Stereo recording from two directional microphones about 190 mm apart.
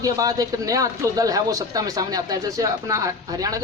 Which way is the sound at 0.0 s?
20° right (ahead or behind).